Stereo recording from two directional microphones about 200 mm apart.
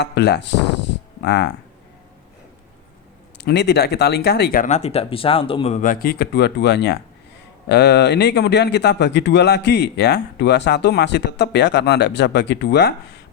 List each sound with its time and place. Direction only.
0.0 s speech: 60° left (ahead or behind)
3.3 s speech: 55° left (ahead or behind)